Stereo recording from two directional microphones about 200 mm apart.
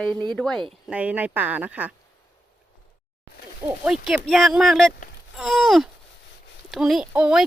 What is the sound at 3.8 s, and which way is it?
Speech, 5° right (ahead or behind).